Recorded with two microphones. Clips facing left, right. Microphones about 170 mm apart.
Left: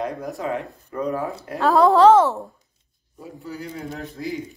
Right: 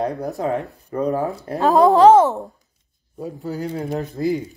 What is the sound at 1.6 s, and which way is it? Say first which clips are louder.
Speech: right 2 dB; 20° right (ahead or behind).